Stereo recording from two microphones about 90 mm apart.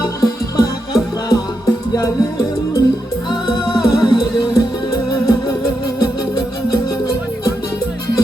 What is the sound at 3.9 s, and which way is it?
Music, 55° left (ahead or behind).